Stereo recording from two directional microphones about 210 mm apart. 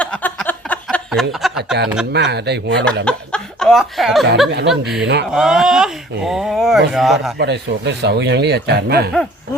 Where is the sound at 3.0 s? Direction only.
5° left (ahead or behind).